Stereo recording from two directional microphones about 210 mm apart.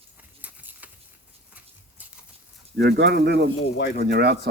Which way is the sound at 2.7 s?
50° right (ahead or behind).